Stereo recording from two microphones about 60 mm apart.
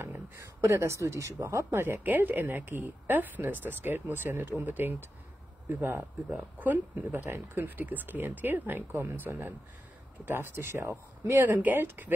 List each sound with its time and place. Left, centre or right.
0.4 s speech: right
2.0 s speech: right
11.3 s speech: right